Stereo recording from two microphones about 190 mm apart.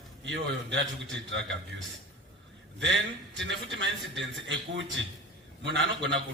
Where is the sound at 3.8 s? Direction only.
70° right (ahead or behind).